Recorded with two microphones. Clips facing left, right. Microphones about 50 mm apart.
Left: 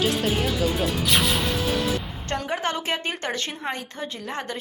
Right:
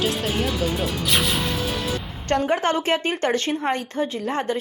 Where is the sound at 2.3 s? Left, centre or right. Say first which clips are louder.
Right 6 dB; right.